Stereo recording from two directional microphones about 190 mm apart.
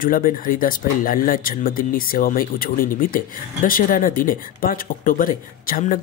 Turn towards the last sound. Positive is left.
turn(degrees=45)  # may be behind; listen again after turning